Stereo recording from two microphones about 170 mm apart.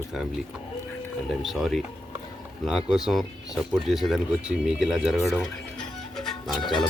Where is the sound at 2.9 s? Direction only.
Centre (ahead or behind).